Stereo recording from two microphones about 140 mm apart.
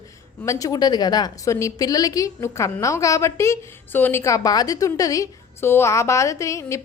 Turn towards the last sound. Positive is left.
turn(degrees=20)  # may be behind; listen again after turning